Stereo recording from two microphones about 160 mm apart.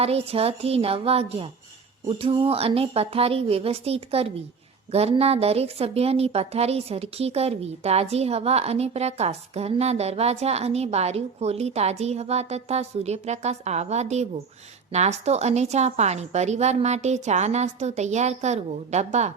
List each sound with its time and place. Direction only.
0.0 s a woman's voice: 40° right (ahead or behind)